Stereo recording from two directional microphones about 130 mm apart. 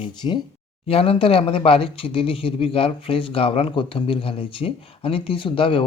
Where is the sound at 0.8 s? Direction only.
45° left (ahead or behind).